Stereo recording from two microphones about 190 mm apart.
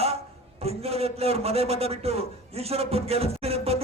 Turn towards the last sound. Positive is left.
turn(degrees=-30)  # may be behind; listen again after turning